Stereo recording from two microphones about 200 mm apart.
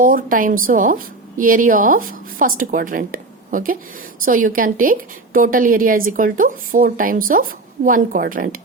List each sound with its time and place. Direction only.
0.0 s a woman's voice: 45° right (ahead or behind)